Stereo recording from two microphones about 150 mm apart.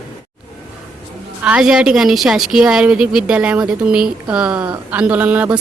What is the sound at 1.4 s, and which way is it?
A woman's voice, 5° right (ahead or behind).